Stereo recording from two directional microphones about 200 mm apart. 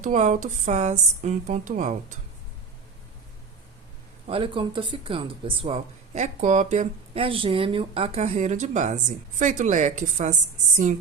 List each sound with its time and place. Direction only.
0.0 s speech: 35° right (ahead or behind)
4.3 s speech: 25° right (ahead or behind)